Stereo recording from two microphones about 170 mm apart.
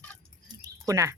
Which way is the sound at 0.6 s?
20° right (ahead or behind).